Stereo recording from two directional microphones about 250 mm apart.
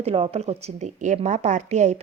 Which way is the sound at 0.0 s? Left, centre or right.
Right.